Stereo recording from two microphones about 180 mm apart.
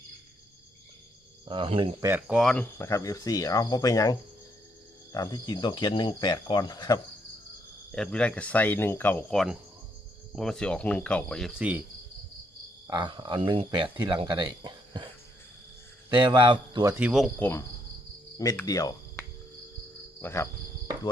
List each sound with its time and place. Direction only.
1.5 s speech: 30° right (ahead or behind)
2.0 s speech: 10° right (ahead or behind)
2.7 s speech: 15° left (ahead or behind)
7.9 s speech: 5° left (ahead or behind)
12.9 s speech: 25° right (ahead or behind)
13.8 s speech: 10° right (ahead or behind)
14.1 s speech: 25° right (ahead or behind)
17.0 s speech: centre (ahead or behind)
17.4 s speech: 15° left (ahead or behind)
18.6 s cricket: 20° left (ahead or behind)
20.2 s speech: 15° left (ahead or behind)